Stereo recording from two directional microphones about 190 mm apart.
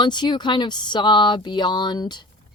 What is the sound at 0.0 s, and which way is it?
Speech, 25° left (ahead or behind).